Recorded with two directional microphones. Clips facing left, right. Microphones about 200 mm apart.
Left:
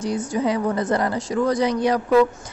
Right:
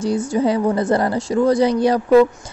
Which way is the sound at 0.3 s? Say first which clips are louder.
Right 4 dB; 30° right (ahead or behind).